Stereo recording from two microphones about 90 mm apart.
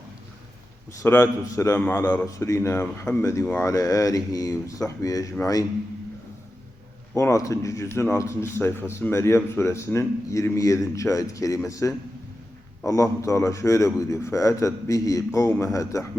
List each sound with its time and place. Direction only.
1.0 s a man's voice: 25° left (ahead or behind)
1.5 s speech: 35° left (ahead or behind)
7.1 s speech: 35° left (ahead or behind)